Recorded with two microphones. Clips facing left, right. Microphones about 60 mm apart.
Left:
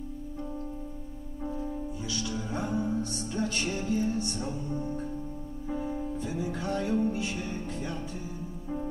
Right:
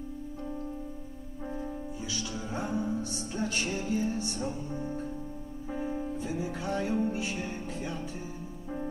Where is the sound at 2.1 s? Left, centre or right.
Right.